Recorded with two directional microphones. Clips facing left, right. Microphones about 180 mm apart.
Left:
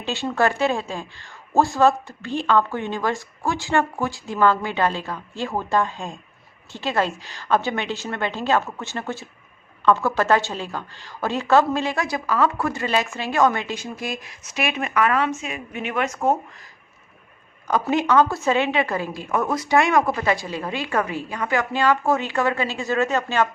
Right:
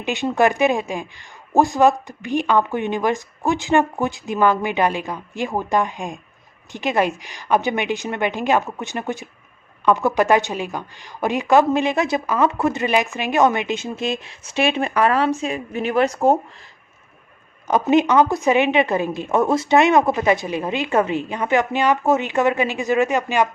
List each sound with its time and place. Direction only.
0.0 s speech: 15° right (ahead or behind); by 16.4 s 35° right (ahead or behind)
17.7 s a woman's voice: 20° right (ahead or behind)